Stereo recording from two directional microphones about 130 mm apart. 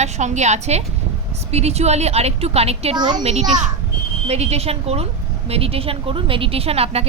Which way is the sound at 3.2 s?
60° right (ahead or behind).